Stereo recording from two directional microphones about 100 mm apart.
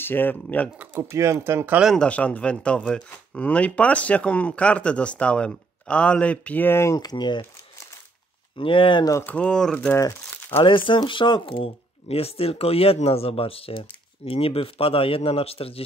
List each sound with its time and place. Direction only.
0.0 s speech: 20° left (ahead or behind)
0.7 s speech: 25° right (ahead or behind)
2.0 s speech: 15° left (ahead or behind)
7.0 s speech: 45° left (ahead or behind)
8.5 s speech: 60° left (ahead or behind)
9.2 s speech: 15° left (ahead or behind)
10.6 s speech: 55° left (ahead or behind); by 15.8 s 75° left (ahead or behind)